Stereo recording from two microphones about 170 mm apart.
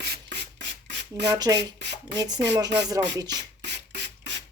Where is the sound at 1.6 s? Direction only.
80° right.